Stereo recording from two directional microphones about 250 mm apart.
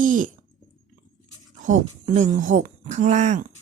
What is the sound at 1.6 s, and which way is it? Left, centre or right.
Speech, right.